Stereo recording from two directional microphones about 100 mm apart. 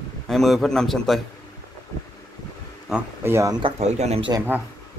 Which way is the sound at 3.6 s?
75° right (ahead or behind).